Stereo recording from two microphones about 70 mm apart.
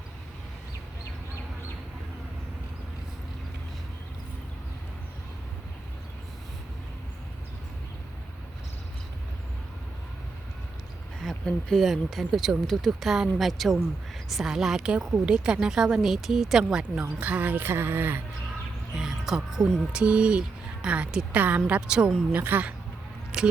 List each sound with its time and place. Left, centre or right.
11.2 s a woman's voice: centre
17.2 s speech: right
18.9 s a woman's voice: centre
22.3 s speech: right
23.3 s speech: centre